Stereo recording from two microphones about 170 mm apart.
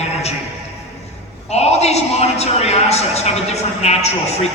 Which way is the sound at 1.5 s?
40° left (ahead or behind).